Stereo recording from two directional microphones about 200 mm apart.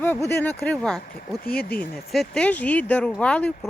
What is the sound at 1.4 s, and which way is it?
Speech, 50° left (ahead or behind).